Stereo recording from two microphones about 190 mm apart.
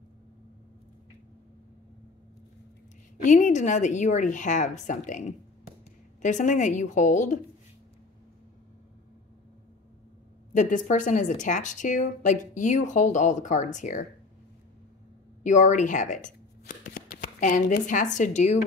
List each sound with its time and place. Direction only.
3.2 s a woman's voice: 40° left (ahead or behind)
10.5 s a woman's voice: 40° left (ahead or behind)
15.4 s speech: 40° left (ahead or behind)